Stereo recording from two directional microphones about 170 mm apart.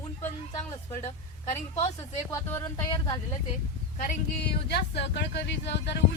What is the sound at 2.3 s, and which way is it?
Speech, 15° left (ahead or behind).